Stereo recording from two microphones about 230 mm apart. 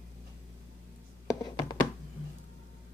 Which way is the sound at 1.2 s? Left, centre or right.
Centre.